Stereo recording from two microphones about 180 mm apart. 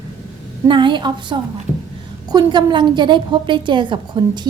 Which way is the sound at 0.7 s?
25° right (ahead or behind).